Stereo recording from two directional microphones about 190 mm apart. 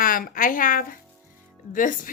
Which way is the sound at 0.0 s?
50° left (ahead or behind).